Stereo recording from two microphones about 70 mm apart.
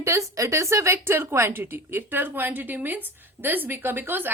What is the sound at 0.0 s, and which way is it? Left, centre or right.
A woman's voice, right.